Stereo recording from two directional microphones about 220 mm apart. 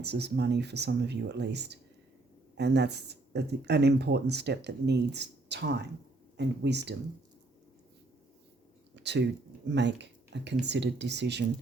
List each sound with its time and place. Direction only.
0.0 s speech: 50° right (ahead or behind)
9.0 s speech: 50° right (ahead or behind)